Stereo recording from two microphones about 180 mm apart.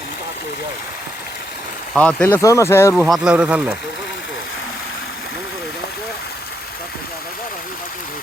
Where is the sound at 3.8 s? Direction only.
70° left (ahead or behind).